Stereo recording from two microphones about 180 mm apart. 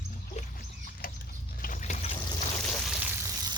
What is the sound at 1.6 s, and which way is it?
Fill, 45° left (ahead or behind).